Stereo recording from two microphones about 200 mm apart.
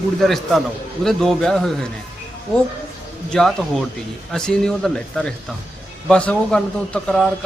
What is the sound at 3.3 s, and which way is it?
A man's voice, centre (ahead or behind).